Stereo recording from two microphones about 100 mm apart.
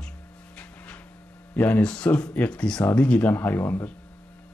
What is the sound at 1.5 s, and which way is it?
Speech, 20° left (ahead or behind).